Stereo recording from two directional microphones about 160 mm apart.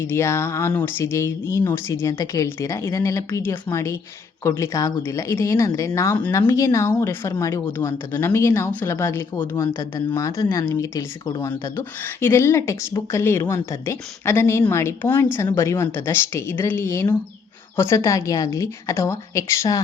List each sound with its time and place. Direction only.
0.0 s a woman's voice: 15° left (ahead or behind)